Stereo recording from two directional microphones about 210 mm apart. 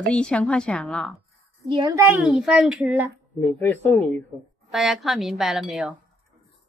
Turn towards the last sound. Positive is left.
turn(degrees=0)  # may be behind; listen again after turning